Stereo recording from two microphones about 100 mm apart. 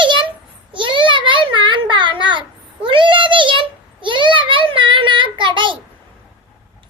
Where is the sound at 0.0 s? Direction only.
55° right (ahead or behind).